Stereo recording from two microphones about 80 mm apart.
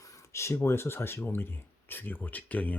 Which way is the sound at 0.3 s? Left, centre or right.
Left.